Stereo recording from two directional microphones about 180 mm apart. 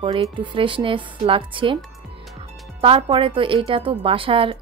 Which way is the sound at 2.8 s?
30° right (ahead or behind).